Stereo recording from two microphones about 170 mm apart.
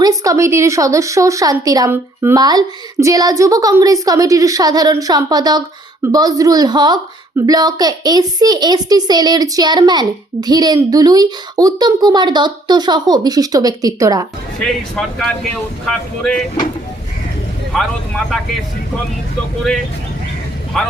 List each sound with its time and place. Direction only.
0.0 s a woman's voice: 20° right (ahead or behind)
14.6 s speech: 5° left (ahead or behind)
17.7 s speech: centre (ahead or behind)
20.7 s speech: centre (ahead or behind)